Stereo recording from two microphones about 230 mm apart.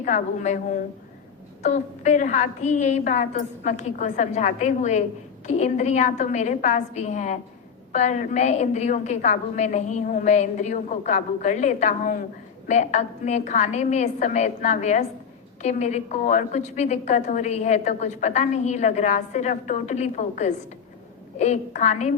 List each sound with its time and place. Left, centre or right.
0.0 s a woman's voice: left
1.6 s a woman's voice: left